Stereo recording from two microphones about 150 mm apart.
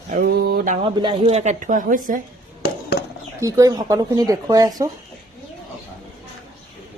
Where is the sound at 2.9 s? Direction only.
90° left.